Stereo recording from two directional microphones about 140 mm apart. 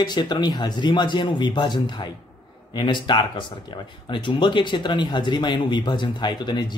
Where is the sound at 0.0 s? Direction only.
30° left (ahead or behind).